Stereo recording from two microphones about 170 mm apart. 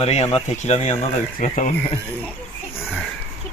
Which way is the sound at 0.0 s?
40° left (ahead or behind).